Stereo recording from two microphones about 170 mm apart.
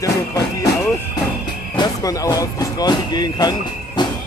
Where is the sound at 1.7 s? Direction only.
20° left (ahead or behind).